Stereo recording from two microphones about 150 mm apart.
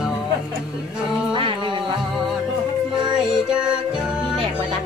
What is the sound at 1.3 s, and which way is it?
Music, 35° right (ahead or behind).